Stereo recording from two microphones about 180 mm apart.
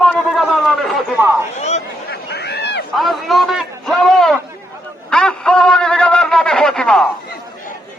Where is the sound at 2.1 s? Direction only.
65° left (ahead or behind).